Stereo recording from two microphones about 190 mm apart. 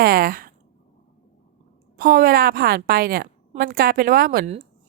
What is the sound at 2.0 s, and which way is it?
A woman's voice, 50° right (ahead or behind).